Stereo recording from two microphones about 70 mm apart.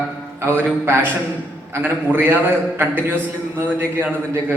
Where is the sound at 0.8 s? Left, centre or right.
Right.